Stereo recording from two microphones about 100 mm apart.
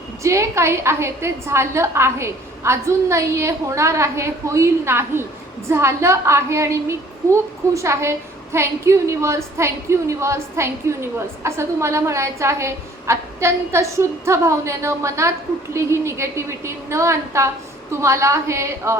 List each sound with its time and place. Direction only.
0.2 s a woman's voice: 30° right (ahead or behind)